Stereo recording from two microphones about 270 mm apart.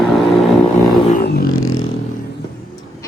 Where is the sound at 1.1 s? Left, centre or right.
Left.